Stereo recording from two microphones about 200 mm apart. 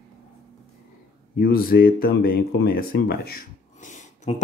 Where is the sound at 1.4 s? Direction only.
50° left (ahead or behind).